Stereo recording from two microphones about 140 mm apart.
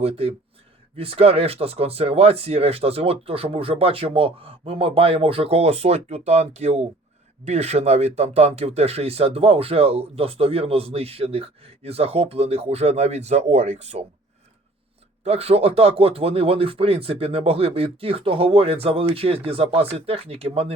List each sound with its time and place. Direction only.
0.0 s speech: 45° right (ahead or behind)
15.2 s speech: 45° right (ahead or behind)